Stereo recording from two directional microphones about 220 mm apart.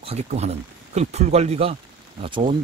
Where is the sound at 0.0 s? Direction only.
30° right (ahead or behind).